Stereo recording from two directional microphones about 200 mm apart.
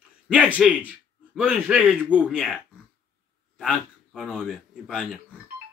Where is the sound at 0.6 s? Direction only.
5° right (ahead or behind).